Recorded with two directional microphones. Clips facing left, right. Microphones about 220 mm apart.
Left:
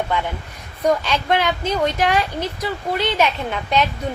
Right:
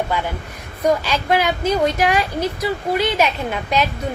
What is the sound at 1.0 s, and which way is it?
A woman's voice, 5° right (ahead or behind).